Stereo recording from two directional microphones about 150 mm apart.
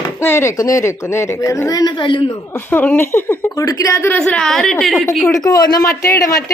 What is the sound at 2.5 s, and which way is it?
A woman's voice, 15° left (ahead or behind).